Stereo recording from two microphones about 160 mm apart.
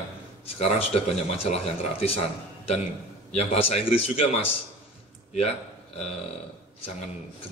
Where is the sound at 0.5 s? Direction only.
40° left (ahead or behind).